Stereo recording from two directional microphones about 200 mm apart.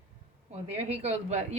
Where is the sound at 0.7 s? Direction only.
35° right (ahead or behind).